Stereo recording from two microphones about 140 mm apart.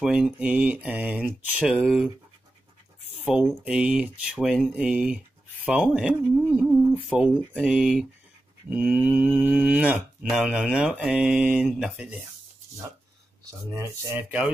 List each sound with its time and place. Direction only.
0.0 s speech: 5° right (ahead or behind)
1.8 s speech: centre (ahead or behind)
3.3 s speech: 10° right (ahead or behind)
13.5 s speech: 20° right (ahead or behind)